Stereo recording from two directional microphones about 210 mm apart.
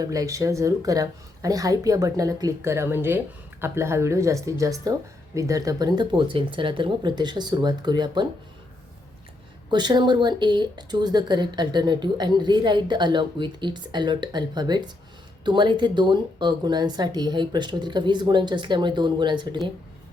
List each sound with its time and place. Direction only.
0.0 s speech: 15° right (ahead or behind)
9.6 s speech: 20° right (ahead or behind)